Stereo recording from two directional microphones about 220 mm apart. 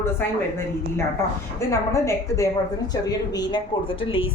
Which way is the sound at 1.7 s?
15° left (ahead or behind).